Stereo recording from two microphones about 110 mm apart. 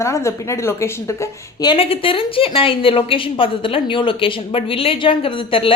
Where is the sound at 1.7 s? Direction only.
60° left (ahead or behind).